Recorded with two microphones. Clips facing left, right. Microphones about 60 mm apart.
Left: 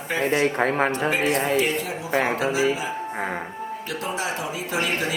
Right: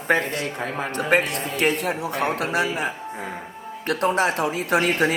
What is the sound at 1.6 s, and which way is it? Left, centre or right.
A man's voice, right.